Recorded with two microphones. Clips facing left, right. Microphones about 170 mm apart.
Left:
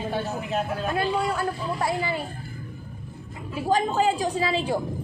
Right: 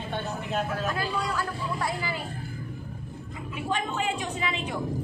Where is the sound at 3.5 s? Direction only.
35° left (ahead or behind).